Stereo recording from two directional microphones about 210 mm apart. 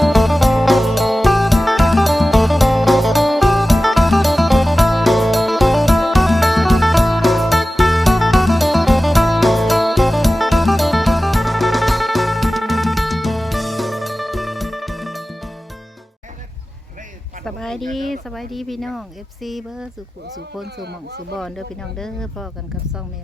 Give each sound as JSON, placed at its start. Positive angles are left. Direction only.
{"t": 0.0, "sound": "music", "side_deg": 0}
{"t": 17.4, "sound": "a sound", "side_deg": 0}
{"t": 17.9, "sound": "speech", "side_deg": 0}
{"t": 20.7, "sound": "speech", "side_deg": -50}
{"t": 21.9, "sound": "speech", "side_deg": 0}